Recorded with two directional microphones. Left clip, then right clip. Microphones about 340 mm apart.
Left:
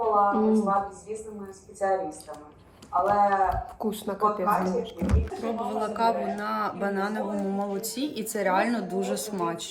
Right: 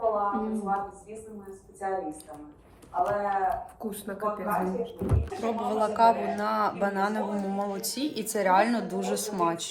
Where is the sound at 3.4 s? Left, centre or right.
Centre.